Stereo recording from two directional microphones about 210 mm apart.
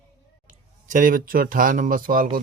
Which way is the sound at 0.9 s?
40° right (ahead or behind).